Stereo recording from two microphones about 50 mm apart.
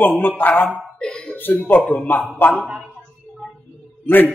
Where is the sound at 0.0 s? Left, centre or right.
Left.